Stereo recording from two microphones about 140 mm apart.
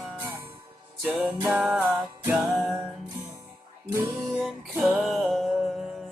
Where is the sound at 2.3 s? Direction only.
20° right (ahead or behind).